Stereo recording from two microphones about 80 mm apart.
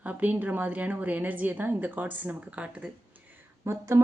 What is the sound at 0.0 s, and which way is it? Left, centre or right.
Speech, centre.